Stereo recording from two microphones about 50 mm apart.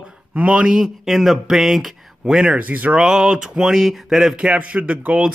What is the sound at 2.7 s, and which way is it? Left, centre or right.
Speech, right.